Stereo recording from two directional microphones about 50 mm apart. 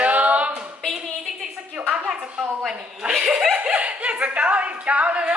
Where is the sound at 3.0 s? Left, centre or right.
Centre.